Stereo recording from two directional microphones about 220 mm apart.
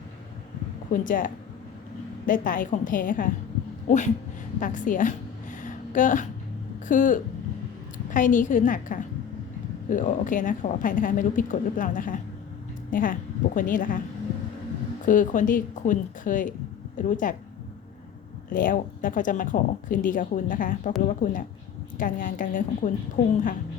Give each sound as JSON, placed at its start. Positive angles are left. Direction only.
{"t": 0.9, "sound": "speech", "side_deg": 40}
{"t": 4.6, "sound": "a sound", "side_deg": 35}
{"t": 6.8, "sound": "a woman's voice", "side_deg": 35}
{"t": 15.0, "sound": "speech", "side_deg": 35}
{"t": 18.5, "sound": "speech", "side_deg": 40}